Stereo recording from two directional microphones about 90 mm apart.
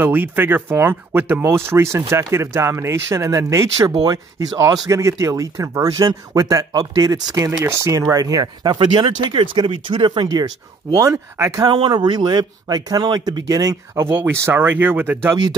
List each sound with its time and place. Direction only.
0.0 s speech: 20° right (ahead or behind)
4.0 s speech: 45° right (ahead or behind)
11.0 s speech: 35° right (ahead or behind)
11.6 s speech: 60° right (ahead or behind)
13.9 s speech: 25° right (ahead or behind)